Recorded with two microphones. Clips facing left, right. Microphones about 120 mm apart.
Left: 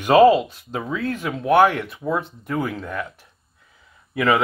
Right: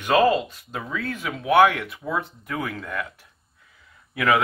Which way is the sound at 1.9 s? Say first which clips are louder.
Left 4 dB; 30° left (ahead or behind).